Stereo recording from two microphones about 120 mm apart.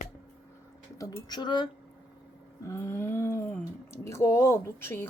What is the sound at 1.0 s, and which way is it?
Speech, 35° left (ahead or behind).